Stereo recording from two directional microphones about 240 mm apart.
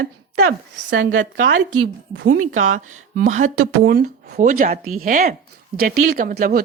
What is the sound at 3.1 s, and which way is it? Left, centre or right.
Speech, right.